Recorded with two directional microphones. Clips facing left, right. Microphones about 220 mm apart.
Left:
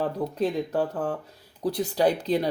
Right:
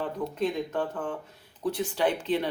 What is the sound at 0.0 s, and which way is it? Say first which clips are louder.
Speech: left 3 dB; 35° left (ahead or behind).